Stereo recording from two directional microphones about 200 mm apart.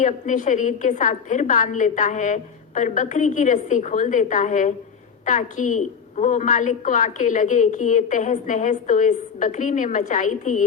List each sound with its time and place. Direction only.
0.0 s a woman's voice: 40° left (ahead or behind)